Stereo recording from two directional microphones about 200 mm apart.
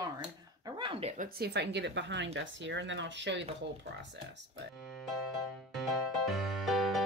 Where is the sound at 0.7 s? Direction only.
25° right (ahead or behind).